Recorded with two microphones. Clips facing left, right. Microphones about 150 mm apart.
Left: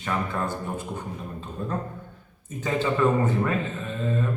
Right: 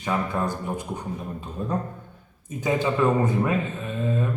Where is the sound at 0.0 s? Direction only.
15° right (ahead or behind).